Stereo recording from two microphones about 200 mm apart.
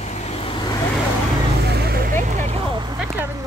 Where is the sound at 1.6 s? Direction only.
55° right (ahead or behind).